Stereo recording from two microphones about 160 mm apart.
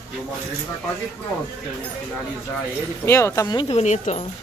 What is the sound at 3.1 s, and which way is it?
Speech, 15° left (ahead or behind).